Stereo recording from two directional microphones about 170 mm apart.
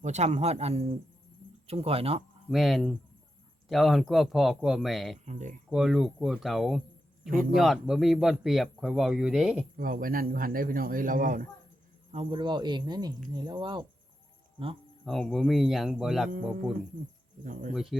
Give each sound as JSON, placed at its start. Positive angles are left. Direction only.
{"t": 0.0, "sound": "a man's voice", "side_deg": -40}
{"t": 2.5, "sound": "speech", "side_deg": 0}
{"t": 5.2, "sound": "speech", "side_deg": -45}
{"t": 5.6, "sound": "speech", "side_deg": -5}
{"t": 9.7, "sound": "a man's voice", "side_deg": -55}
{"t": 12.1, "sound": "speech", "side_deg": -30}
{"t": 15.0, "sound": "speech", "side_deg": 0}
{"t": 17.4, "sound": "speech", "side_deg": -50}